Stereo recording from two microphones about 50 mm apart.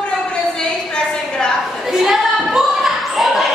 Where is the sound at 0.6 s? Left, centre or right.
Centre.